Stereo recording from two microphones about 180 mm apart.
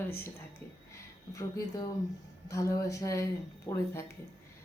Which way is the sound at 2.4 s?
15° left (ahead or behind).